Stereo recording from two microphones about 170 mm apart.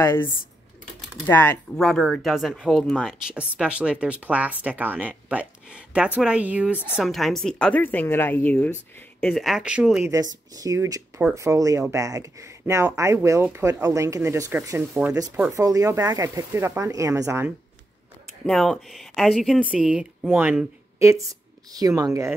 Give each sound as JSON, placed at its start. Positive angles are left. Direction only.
{"t": 0.0, "sound": "a woman's voice", "side_deg": 15}
{"t": 10.0, "sound": "speech", "side_deg": -20}
{"t": 14.8, "sound": "speech", "side_deg": -5}
{"t": 15.5, "sound": "speech", "side_deg": -20}
{"t": 18.4, "sound": "speech", "side_deg": 0}